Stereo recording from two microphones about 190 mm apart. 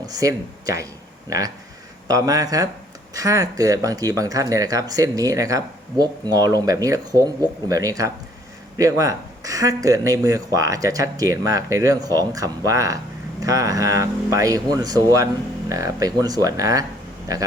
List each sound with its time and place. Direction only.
0.0 s speech: 20° right (ahead or behind)
2.0 s speech: 20° right (ahead or behind)